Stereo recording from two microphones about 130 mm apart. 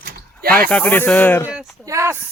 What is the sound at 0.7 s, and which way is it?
Speech, 10° left (ahead or behind).